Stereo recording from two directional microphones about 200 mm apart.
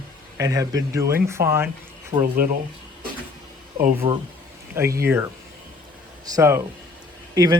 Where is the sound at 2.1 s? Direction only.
40° right (ahead or behind).